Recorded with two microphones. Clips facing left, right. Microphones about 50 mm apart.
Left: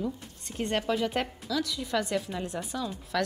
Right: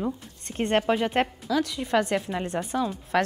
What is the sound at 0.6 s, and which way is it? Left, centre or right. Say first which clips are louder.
A woman's voice: right 5 dB; right.